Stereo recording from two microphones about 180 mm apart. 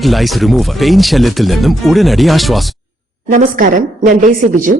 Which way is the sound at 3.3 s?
45° right (ahead or behind).